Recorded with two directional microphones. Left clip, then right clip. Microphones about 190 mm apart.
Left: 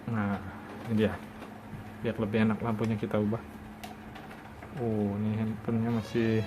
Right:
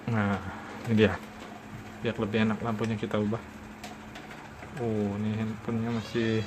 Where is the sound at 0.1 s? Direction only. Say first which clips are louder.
Right 4 dB; 25° right (ahead or behind).